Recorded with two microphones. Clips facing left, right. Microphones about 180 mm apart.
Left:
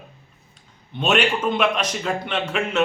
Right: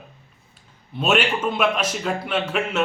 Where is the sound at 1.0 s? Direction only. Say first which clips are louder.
Even; 5° right (ahead or behind).